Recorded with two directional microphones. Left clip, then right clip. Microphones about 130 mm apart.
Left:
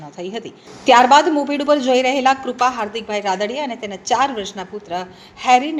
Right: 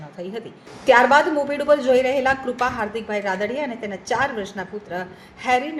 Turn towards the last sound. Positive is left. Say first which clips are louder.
# left 6 dB
turn(degrees=50)  # may be behind; listen again after turning